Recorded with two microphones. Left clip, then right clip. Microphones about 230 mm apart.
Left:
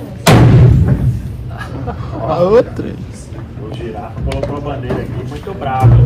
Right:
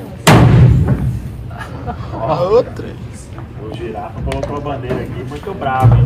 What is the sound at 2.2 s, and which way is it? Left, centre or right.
Speech, centre.